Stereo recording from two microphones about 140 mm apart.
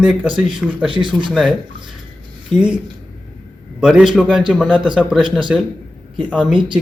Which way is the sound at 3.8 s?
5° right (ahead or behind).